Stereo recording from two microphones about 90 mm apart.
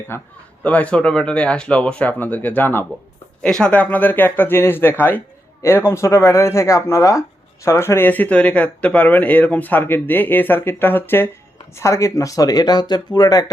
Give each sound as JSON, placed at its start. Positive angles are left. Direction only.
{"t": 0.1, "sound": "speech", "side_deg": 25}
{"t": 0.6, "sound": "speech", "side_deg": 15}
{"t": 3.4, "sound": "speech", "side_deg": 10}